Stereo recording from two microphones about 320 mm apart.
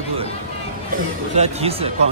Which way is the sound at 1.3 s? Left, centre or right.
Centre.